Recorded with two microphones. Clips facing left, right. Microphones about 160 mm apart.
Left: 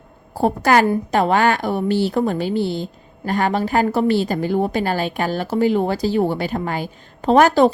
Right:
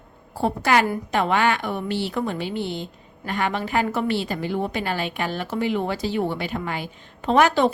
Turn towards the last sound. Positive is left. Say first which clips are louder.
# left 5 dB
turn(degrees=40)  # may be behind; listen again after turning